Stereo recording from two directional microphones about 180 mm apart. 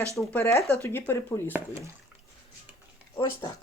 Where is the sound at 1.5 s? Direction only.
15° right (ahead or behind).